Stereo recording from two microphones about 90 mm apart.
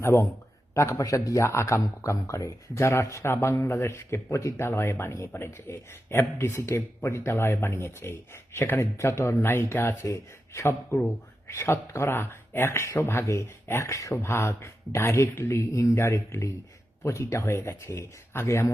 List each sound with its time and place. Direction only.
0.7 s speech: 35° left (ahead or behind)